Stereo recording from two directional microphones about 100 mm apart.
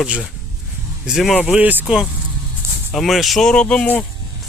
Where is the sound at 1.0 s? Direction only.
Centre (ahead or behind).